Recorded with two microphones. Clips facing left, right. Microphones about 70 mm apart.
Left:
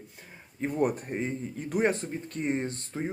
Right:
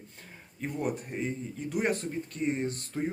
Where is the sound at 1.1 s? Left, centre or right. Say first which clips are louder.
Left 2 dB; left.